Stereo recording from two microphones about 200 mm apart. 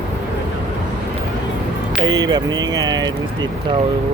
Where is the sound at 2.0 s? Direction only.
20° right (ahead or behind).